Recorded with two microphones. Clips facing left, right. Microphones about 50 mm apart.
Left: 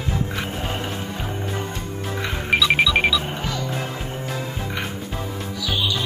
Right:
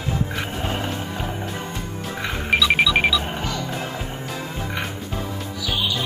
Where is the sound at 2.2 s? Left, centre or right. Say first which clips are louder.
Even; centre.